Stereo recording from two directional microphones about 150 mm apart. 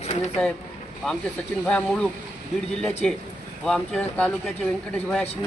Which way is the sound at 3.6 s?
5° left (ahead or behind).